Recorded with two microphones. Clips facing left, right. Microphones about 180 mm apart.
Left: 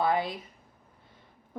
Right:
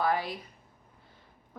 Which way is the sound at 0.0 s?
20° left (ahead or behind).